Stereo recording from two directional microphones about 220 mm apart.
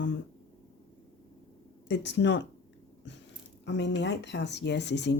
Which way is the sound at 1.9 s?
55° left (ahead or behind).